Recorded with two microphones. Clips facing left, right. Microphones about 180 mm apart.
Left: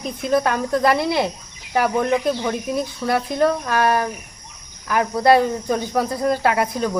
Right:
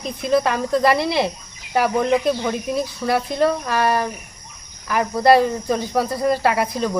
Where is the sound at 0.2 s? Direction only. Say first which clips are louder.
Right 1 dB; centre (ahead or behind).